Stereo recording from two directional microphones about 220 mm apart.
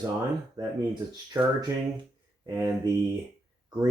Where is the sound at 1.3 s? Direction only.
10° right (ahead or behind).